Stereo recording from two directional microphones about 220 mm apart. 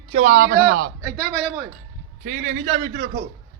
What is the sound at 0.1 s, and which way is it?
Speech, 30° right (ahead or behind).